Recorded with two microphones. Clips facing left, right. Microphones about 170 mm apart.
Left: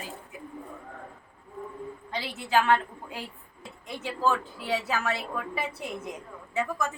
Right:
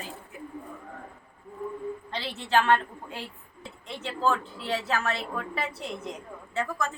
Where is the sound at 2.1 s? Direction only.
10° left (ahead or behind).